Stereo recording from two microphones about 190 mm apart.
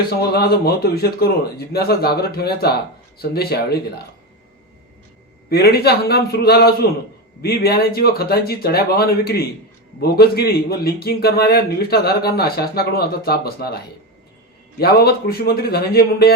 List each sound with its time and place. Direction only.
0.2 s a man's voice: 55° left (ahead or behind)
5.5 s a man's voice: 55° left (ahead or behind)
14.8 s a man's voice: 55° left (ahead or behind)